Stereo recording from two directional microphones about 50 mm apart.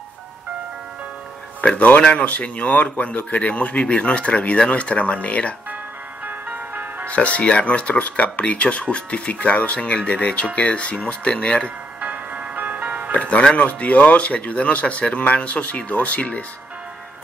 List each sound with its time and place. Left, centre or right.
1.6 s speech: left
6.2 s music: right
7.1 s speech: left
12.0 s music: right
13.1 s speech: left